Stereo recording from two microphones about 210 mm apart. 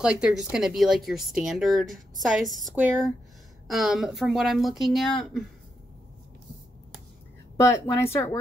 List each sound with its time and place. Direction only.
0.0 s speech: 5° right (ahead or behind)
7.5 s speech: 15° left (ahead or behind)